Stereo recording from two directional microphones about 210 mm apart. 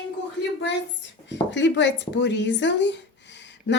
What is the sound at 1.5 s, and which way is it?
Speech, 55° left (ahead or behind).